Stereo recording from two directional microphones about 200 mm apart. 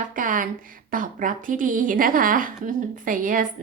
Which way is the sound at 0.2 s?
40° right (ahead or behind).